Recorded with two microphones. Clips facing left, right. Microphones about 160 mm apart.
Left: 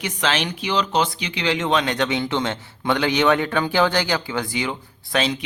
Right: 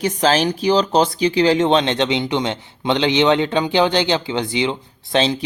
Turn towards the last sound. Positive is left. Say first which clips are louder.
# right 4 dB
turn(degrees=-30)  # may be behind; listen again after turning